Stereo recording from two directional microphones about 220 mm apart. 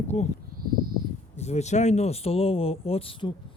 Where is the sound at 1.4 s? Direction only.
30° left (ahead or behind).